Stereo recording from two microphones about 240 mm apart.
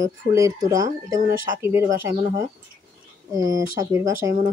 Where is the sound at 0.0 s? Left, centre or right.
Centre.